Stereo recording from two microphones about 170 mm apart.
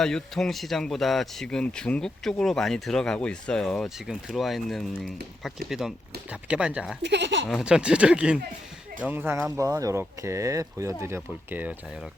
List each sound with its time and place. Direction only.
0.0 s speech: 5° left (ahead or behind)
7.0 s speech: 90° right
7.4 s speech: centre (ahead or behind)